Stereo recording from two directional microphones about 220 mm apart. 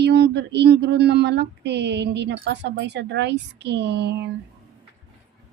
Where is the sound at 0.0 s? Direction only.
50° right (ahead or behind).